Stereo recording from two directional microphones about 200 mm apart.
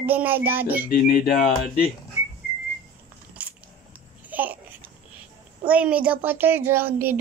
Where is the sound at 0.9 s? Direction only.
45° left (ahead or behind).